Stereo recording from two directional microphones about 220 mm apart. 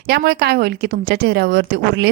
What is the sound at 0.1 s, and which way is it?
A woman's voice, 45° right (ahead or behind).